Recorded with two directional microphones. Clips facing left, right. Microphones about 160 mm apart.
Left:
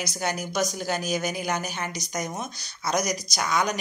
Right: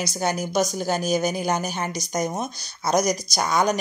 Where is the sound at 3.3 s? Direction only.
40° right (ahead or behind).